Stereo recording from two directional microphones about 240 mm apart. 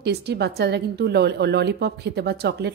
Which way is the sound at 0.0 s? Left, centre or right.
Right.